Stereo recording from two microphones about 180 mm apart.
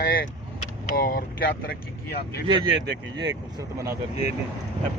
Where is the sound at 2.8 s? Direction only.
75° right (ahead or behind).